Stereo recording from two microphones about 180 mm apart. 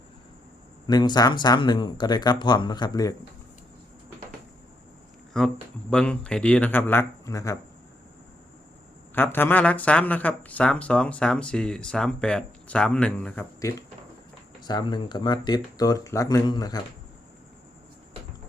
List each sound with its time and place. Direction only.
0.9 s speech: 20° left (ahead or behind)
5.3 s speech: 5° left (ahead or behind)
9.1 s speech: 10° left (ahead or behind)
14.6 s speech: 25° left (ahead or behind)